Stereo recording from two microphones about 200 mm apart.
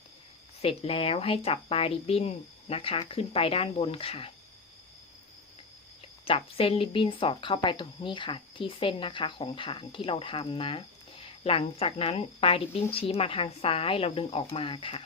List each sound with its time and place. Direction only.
0.6 s speech: 30° left (ahead or behind)
6.2 s speech: 30° left (ahead or behind)